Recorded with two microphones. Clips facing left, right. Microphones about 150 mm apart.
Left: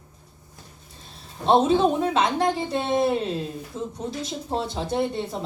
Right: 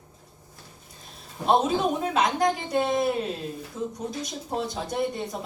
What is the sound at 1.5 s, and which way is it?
Speech, 30° left (ahead or behind).